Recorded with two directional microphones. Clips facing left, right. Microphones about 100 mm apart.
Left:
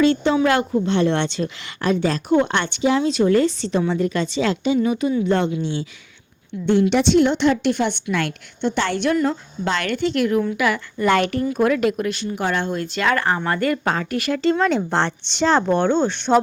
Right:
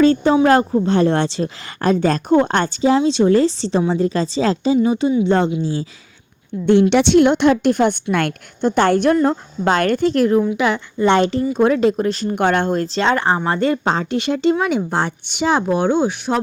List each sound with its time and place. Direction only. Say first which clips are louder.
0.0 s speech: right 4 dB; 40° right (ahead or behind)
6.9 s a woman's voice: right 4 dB; 70° right (ahead or behind); by 10.4 s 35° right (ahead or behind)
10.4 s speech: right 3 dB; 25° right (ahead or behind)
12.3 s speech: right 8 dB; 55° right (ahead or behind); by 14.5 s 25° right (ahead or behind)
14.5 s speech: right 1 dB; 10° right (ahead or behind)